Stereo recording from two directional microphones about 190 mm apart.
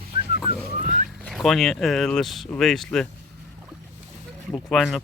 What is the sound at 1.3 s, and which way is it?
Speech, centre (ahead or behind).